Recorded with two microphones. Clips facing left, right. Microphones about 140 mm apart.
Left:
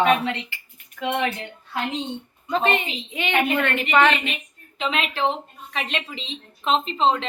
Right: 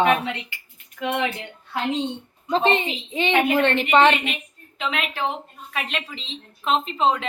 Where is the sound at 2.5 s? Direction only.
30° right (ahead or behind).